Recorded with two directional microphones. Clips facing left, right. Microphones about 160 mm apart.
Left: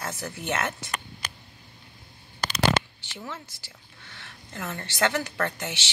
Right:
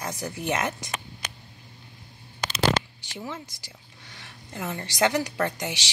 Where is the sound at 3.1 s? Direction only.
15° right (ahead or behind).